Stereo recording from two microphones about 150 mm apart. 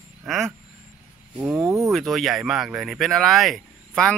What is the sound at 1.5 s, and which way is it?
Speech, 20° right (ahead or behind).